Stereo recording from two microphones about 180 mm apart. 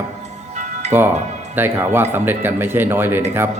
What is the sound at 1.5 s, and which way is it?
Speech, 10° right (ahead or behind).